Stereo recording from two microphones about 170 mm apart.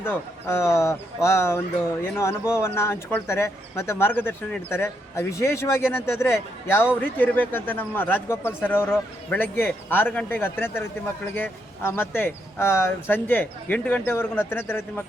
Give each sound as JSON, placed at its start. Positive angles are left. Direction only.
{"t": 0.0, "sound": "a man's voice", "side_deg": 15}